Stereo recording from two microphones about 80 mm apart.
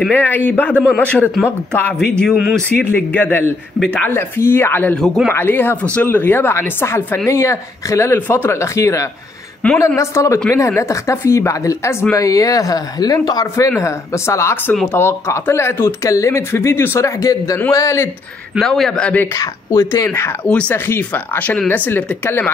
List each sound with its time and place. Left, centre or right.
0.1 s speech: left; by 2.3 s centre
2.9 s speech: centre
3.8 s speech: centre
4.1 s speech: left
4.9 s a man's voice: centre
5.3 s speech: left
7.2 s speech: left
13.7 s speech: left
18.6 s a man's voice: centre
19.3 s speech: left
20.4 s speech: centre
20.7 s speech: left